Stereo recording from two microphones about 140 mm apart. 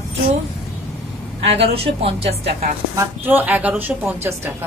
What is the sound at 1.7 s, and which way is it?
Speech, 45° right (ahead or behind).